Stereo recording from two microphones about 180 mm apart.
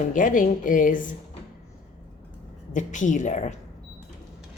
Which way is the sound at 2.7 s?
45° left (ahead or behind).